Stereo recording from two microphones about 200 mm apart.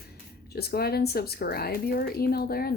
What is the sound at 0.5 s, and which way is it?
Speech, 50° left (ahead or behind).